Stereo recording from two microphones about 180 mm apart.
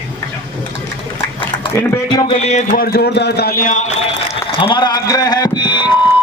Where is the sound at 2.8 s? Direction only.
60° left (ahead or behind); by 3.9 s 45° left (ahead or behind).